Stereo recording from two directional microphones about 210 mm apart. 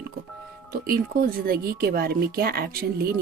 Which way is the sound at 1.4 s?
45° right (ahead or behind).